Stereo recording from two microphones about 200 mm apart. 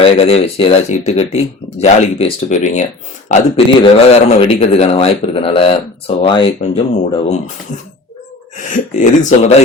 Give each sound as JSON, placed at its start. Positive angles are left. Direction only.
{"t": 0.0, "sound": "speech", "side_deg": 30}
{"t": 8.7, "sound": "speech", "side_deg": 40}